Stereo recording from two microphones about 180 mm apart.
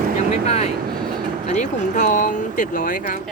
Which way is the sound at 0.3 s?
35° left (ahead or behind).